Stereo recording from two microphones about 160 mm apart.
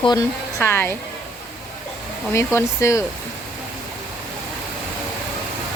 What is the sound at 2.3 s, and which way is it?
Speech, 20° left (ahead or behind).